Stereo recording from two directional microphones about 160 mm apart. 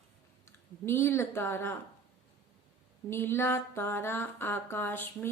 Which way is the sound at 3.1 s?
15° left (ahead or behind).